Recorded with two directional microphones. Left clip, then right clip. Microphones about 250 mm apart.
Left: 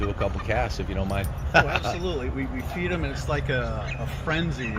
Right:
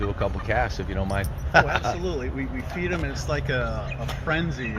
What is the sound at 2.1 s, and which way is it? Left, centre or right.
Speech, right.